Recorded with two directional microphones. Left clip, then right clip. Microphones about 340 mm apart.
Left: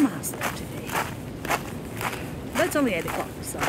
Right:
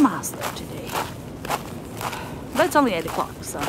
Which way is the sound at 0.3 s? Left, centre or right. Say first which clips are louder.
Even; centre.